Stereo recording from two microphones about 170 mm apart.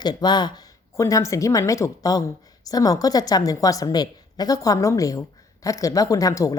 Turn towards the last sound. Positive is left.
turn(degrees=20)  # may be behind; listen again after turning